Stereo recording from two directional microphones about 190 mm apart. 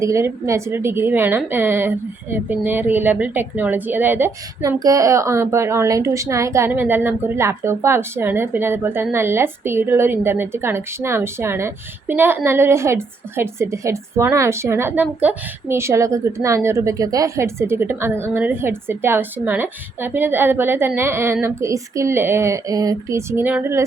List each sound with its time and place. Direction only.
0.0 s a woman's voice: 15° right (ahead or behind)